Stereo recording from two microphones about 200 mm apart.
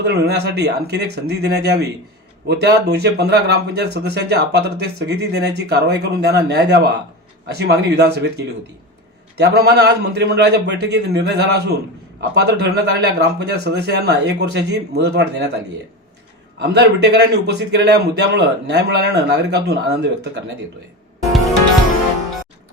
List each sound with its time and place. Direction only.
0.0 s speech: 55° right (ahead or behind)
9.6 s speech: 55° right (ahead or behind)
16.6 s speech: 60° right (ahead or behind)